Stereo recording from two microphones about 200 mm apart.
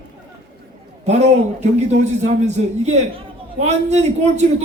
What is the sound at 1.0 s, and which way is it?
Speech, 35° right (ahead or behind).